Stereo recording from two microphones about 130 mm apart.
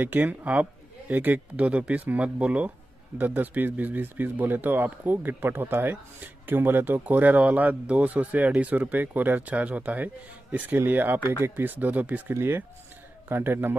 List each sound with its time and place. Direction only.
0.0 s speech: 10° right (ahead or behind)